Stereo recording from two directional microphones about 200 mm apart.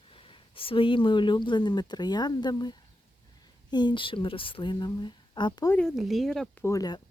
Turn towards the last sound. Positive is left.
turn(degrees=20)  # may be behind; listen again after turning